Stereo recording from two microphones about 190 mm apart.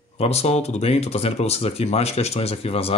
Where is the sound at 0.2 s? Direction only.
35° left (ahead or behind).